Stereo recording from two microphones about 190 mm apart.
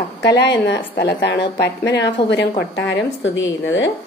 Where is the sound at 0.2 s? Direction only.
65° left (ahead or behind).